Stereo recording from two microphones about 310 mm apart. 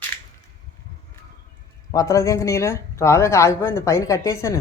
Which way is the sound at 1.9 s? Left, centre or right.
Centre.